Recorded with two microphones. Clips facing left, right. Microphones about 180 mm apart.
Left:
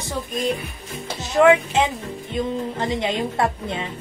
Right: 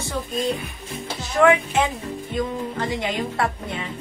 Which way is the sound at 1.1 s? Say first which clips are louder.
Left 2 dB; 20° left (ahead or behind).